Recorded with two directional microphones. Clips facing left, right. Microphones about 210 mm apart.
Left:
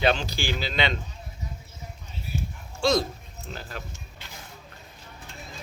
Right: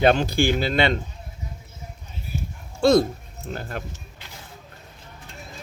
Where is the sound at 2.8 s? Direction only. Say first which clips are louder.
Right 7 dB; 55° right (ahead or behind).